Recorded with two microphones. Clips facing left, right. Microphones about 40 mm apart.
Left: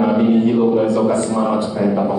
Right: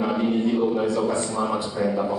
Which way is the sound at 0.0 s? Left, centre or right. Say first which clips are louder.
Left 8 dB; left.